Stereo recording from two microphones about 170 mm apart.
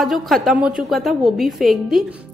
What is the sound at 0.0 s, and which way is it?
A woman's voice, centre (ahead or behind).